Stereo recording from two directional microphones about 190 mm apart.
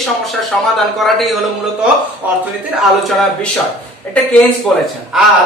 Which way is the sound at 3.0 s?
5° left (ahead or behind).